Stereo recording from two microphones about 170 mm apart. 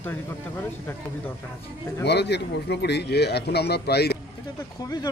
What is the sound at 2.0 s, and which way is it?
Speech, 80° left.